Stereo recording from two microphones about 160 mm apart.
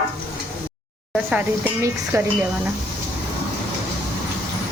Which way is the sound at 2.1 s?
20° right (ahead or behind).